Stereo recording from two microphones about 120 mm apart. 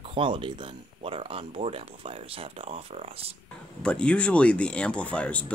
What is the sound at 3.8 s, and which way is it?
Speech, 10° left (ahead or behind).